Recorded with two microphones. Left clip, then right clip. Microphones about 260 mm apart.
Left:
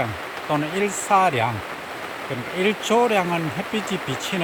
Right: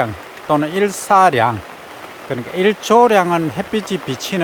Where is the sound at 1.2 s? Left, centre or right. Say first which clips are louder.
Right 8 dB; centre.